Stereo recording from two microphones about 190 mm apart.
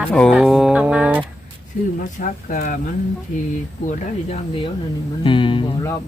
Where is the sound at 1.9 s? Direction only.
45° left (ahead or behind).